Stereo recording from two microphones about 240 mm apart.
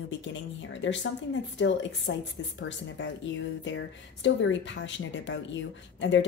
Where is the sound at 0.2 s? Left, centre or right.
Left.